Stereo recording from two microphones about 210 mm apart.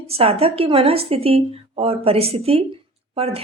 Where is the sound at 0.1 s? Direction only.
30° right (ahead or behind).